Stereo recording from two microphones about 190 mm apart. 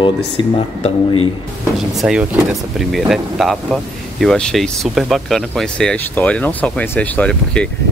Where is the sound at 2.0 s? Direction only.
Centre (ahead or behind).